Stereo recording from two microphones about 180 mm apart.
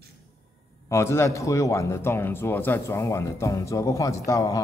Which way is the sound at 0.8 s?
15° left (ahead or behind).